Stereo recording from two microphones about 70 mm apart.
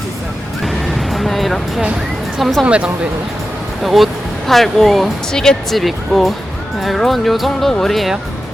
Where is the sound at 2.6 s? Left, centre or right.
Centre.